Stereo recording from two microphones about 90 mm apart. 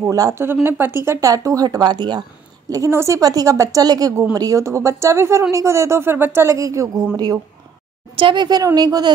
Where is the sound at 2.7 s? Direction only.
35° right (ahead or behind).